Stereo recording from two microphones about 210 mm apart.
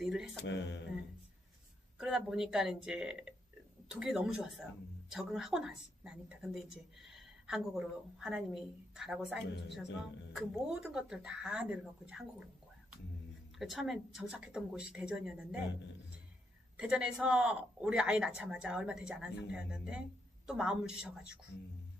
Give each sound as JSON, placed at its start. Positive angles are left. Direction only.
{"t": 0.0, "sound": "music", "side_deg": -5}
{"t": 0.4, "sound": "mantra", "side_deg": 55}
{"t": 2.0, "sound": "a woman's voice", "side_deg": -5}
{"t": 13.6, "sound": "a woman's voice", "side_deg": 0}
{"t": 16.7, "sound": "a woman's voice", "side_deg": -5}